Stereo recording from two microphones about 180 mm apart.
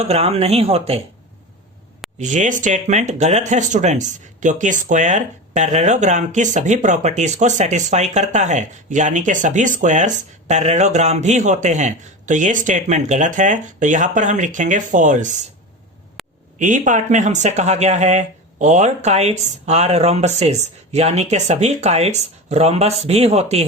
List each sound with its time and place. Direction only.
0.0 s speech: 35° right (ahead or behind)
2.1 s speech: 40° right (ahead or behind)
16.2 s a sound: centre (ahead or behind)
16.6 s speech: 45° right (ahead or behind)